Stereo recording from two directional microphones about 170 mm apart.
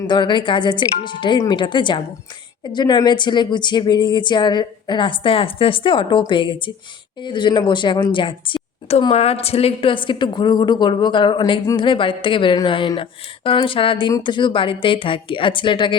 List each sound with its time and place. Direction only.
0.1 s a woman's voice: 25° left (ahead or behind)